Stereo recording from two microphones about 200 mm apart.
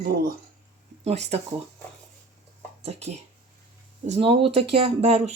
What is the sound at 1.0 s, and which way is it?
Speech, 35° right (ahead or behind).